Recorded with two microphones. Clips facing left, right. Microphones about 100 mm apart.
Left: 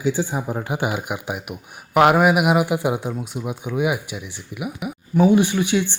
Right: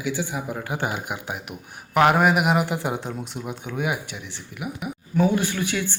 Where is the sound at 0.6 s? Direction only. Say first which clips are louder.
Left 3 dB; 15° left (ahead or behind).